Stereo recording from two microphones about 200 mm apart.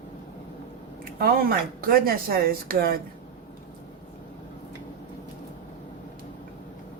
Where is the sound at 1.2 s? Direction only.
50° right (ahead or behind).